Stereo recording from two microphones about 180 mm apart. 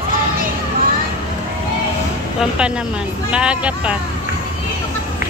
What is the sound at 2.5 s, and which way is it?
A woman's voice, 5° right (ahead or behind).